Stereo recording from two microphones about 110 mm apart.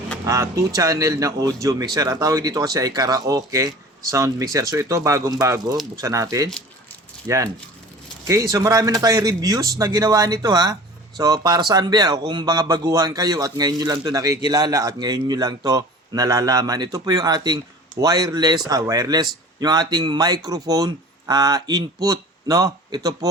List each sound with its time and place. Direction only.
0.3 s speech: 30° right (ahead or behind)